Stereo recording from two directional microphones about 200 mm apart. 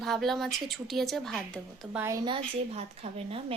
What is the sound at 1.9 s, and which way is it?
A woman's voice, 15° right (ahead or behind).